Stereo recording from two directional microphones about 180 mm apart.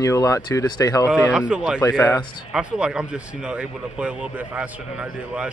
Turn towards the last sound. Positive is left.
turn(degrees=-5)  # may be behind; listen again after turning